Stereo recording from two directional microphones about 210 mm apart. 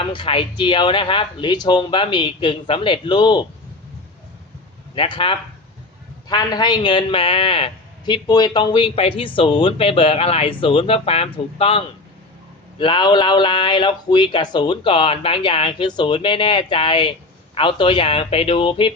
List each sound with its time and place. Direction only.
0.0 s a man's voice: 25° left (ahead or behind)
4.9 s a man's voice: 25° left (ahead or behind)